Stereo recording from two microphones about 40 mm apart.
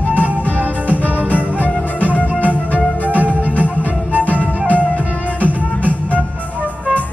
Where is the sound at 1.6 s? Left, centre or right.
Left.